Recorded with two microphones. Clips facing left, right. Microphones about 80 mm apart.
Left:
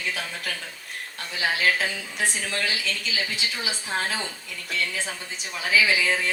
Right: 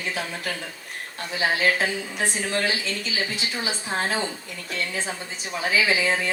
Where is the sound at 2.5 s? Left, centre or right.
Right.